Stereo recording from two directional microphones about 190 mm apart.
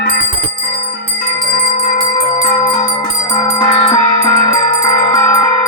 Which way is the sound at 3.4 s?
25° left (ahead or behind).